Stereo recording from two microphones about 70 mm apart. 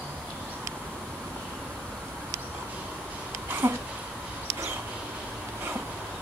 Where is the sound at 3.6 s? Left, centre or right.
Right.